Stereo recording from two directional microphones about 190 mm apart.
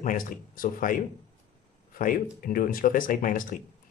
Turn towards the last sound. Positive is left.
turn(degrees=45)  # may be behind; listen again after turning